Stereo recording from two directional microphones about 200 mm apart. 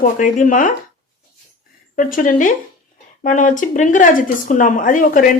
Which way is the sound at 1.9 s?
40° left (ahead or behind).